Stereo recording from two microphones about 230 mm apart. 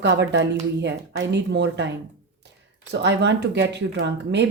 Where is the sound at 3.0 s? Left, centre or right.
Right.